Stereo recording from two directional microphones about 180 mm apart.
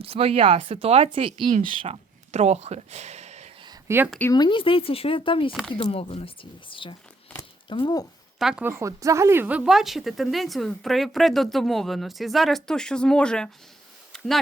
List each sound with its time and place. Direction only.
0.0 s speech: 30° right (ahead or behind)
1.5 s speech: 45° right (ahead or behind)
3.6 s a sound: 20° right (ahead or behind)
4.3 s speech: 25° left (ahead or behind)
5.5 s speech: centre (ahead or behind)
5.9 s speech: 35° left (ahead or behind)
7.3 s a sound: 25° left (ahead or behind)
8.4 s speech: 5° right (ahead or behind)
14.1 s a sound: centre (ahead or behind)